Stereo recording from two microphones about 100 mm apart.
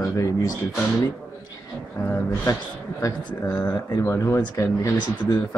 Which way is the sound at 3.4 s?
15° left (ahead or behind).